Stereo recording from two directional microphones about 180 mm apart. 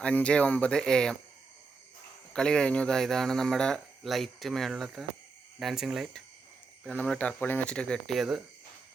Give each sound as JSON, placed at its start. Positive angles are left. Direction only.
{"t": 0.0, "sound": "speech", "side_deg": 5}
{"t": 2.3, "sound": "speech", "side_deg": 5}